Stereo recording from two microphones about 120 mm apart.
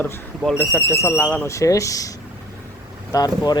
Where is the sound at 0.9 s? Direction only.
20° left (ahead or behind).